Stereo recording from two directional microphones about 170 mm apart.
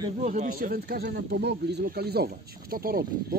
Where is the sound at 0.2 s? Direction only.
45° right (ahead or behind).